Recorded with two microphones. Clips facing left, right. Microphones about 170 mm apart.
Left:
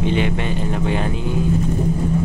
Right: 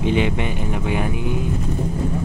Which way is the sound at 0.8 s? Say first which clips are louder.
Left 1 dB; 10° right (ahead or behind).